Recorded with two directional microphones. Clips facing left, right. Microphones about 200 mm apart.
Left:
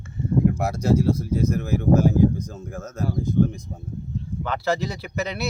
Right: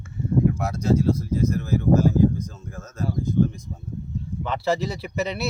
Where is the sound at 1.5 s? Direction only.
55° left (ahead or behind).